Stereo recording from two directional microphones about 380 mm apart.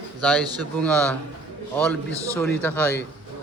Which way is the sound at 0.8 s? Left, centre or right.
Centre.